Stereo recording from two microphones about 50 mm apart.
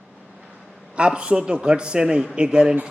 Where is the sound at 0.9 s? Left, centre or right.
Right.